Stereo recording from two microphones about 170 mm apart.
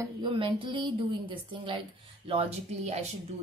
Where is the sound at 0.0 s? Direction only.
30° right (ahead or behind).